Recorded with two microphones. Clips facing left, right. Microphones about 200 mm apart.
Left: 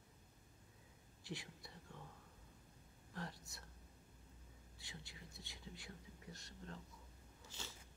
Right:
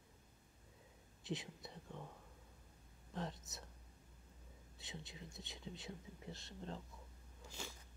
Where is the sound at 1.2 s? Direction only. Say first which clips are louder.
Right 6 dB; 20° right (ahead or behind).